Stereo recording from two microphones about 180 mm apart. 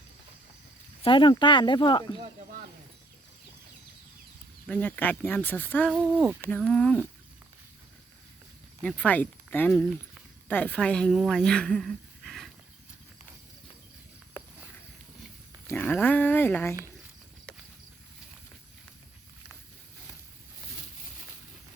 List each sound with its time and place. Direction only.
1.0 s speech: 25° left (ahead or behind)
4.6 s speech: 10° left (ahead or behind)
5.9 s speech: 5° right (ahead or behind)
6.4 s speech: 5° left (ahead or behind)
8.8 s speech: 5° left (ahead or behind)
15.6 s speech: 10° left (ahead or behind)